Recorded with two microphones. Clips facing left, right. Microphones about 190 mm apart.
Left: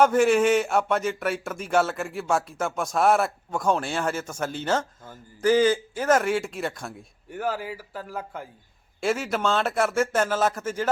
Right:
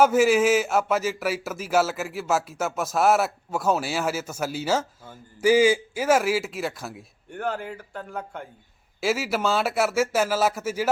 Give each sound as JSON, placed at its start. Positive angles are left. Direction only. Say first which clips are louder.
{"t": 0.0, "sound": "speech", "louder": "even", "side_deg": -5}